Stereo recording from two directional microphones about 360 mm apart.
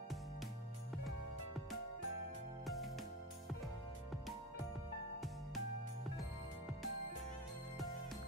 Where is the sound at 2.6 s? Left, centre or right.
Centre.